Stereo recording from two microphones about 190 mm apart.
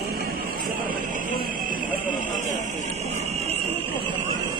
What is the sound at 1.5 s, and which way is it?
Fire alarm, 45° right (ahead or behind).